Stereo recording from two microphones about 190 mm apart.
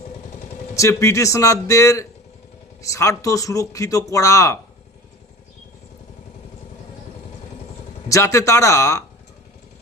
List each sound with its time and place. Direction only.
0.8 s a man's voice: 15° left (ahead or behind)
8.1 s a man's voice: 15° left (ahead or behind)